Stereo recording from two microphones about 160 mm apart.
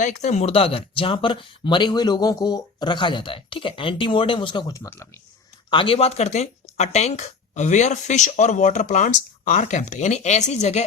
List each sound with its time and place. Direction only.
0.0 s speech: 50° left (ahead or behind); by 5.2 s 15° left (ahead or behind)
5.7 s speech: 35° left (ahead or behind)